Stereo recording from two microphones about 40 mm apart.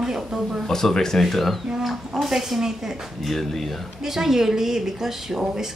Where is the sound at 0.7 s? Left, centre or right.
Centre.